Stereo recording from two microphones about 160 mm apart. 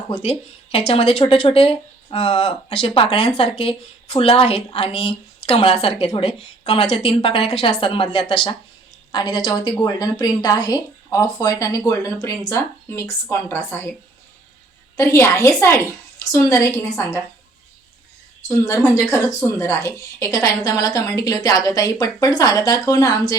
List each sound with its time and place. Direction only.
0.1 s a woman's voice: 40° left (ahead or behind); by 13.9 s 15° left (ahead or behind)
14.9 s a woman's voice: 15° left (ahead or behind)
18.4 s a woman's voice: 20° left (ahead or behind)